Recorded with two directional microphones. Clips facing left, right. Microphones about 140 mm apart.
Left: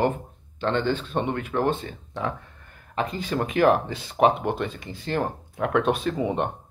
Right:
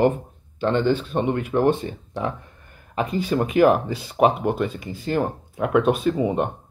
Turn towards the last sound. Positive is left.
turn(degrees=-5)  # may be behind; listen again after turning